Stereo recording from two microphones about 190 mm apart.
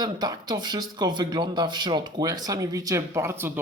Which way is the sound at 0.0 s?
20° right (ahead or behind).